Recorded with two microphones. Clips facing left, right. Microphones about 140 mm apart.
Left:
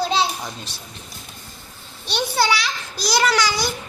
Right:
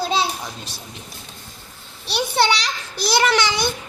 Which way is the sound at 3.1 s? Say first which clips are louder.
Right 1 dB; 25° right (ahead or behind).